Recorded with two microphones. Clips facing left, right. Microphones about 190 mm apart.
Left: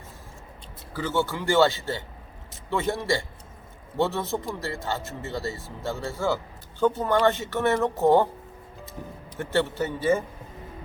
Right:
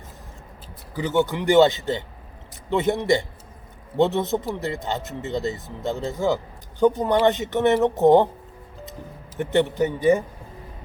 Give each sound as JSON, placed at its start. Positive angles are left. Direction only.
{"t": 0.9, "sound": "speech", "side_deg": -20}
{"t": 9.4, "sound": "a man's voice", "side_deg": -20}